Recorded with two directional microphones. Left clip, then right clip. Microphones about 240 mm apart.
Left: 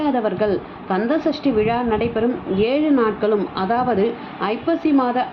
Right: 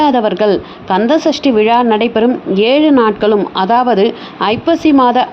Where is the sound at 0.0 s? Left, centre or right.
Right.